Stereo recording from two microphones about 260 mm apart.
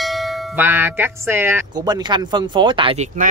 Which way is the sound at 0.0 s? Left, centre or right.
Centre.